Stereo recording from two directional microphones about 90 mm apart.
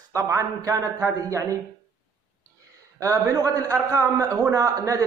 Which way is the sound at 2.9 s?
35° right (ahead or behind).